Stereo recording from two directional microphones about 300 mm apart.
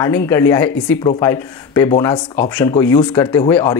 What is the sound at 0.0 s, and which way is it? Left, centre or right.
Speech, centre.